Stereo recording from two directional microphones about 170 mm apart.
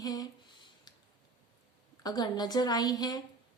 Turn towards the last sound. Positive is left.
turn(degrees=25)  # may be behind; listen again after turning